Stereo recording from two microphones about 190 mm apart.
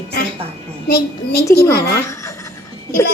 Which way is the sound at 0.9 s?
50° left (ahead or behind).